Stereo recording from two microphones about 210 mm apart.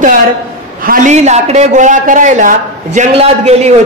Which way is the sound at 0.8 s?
35° right (ahead or behind).